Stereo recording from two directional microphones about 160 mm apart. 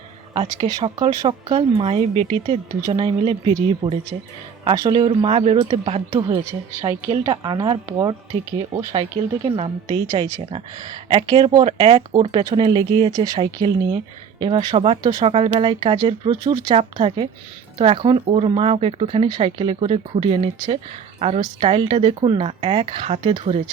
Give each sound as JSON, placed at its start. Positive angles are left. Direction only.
{"t": 0.6, "sound": "speech", "side_deg": -30}